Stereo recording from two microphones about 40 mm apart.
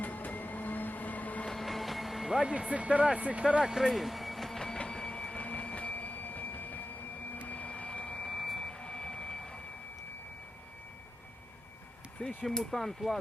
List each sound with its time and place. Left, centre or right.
0.0 s train: left
1.5 s vehicle: centre
2.4 s speech: right
3.6 s speech: centre
4.8 s printer: centre; by 6.8 s left
7.4 s a sound: left
8.3 s a sound: centre
8.8 s a sound: centre
12.5 s speech: centre